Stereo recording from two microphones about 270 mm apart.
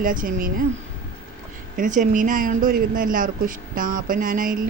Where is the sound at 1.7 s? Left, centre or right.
Right.